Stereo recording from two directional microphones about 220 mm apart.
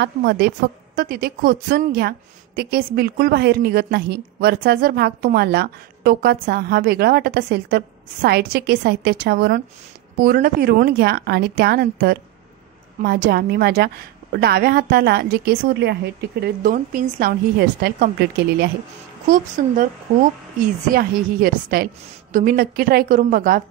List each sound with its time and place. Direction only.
0.0 s a woman's voice: 45° right (ahead or behind)
19.2 s a woman's voice: 35° right (ahead or behind)
20.9 s a woman's voice: 40° right (ahead or behind)